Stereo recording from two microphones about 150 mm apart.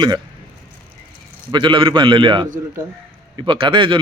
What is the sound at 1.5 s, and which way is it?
Speech, 35° right (ahead or behind).